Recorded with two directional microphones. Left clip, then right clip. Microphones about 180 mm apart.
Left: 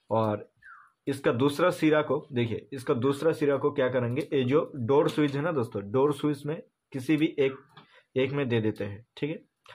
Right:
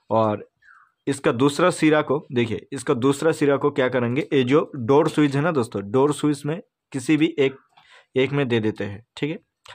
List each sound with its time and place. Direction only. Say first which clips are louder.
0.1 s speech: right 7 dB; 40° right (ahead or behind)